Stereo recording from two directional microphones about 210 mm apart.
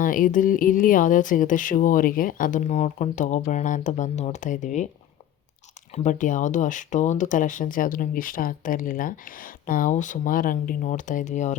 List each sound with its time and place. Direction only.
0.0 s speech: 40° left (ahead or behind)
5.9 s speech: 35° left (ahead or behind)